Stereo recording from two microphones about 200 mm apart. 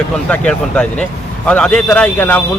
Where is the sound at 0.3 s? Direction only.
5° left (ahead or behind).